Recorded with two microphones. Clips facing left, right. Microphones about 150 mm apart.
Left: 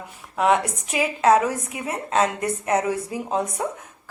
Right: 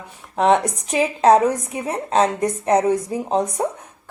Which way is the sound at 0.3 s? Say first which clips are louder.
Right 3 dB; 30° right (ahead or behind).